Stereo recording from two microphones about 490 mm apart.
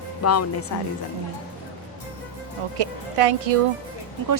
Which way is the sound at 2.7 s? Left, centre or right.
Right.